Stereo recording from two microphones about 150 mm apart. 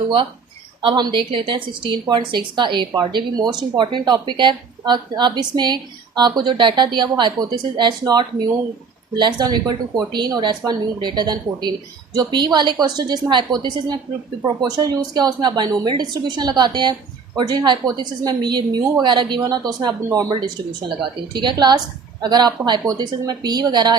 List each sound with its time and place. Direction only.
0.8 s a woman's voice: 30° right (ahead or behind)